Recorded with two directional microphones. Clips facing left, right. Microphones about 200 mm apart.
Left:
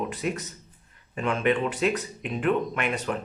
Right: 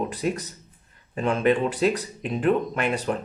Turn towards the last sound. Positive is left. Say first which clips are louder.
# right 3 dB
turn(degrees=-35)  # may be behind; listen again after turning